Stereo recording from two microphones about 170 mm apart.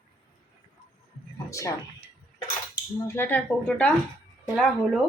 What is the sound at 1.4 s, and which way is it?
Speech, 20° left (ahead or behind).